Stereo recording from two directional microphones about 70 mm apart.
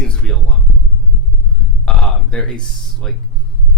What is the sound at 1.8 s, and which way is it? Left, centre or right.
Speech, centre.